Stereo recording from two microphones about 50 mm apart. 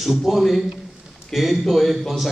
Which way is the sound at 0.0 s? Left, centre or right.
Centre.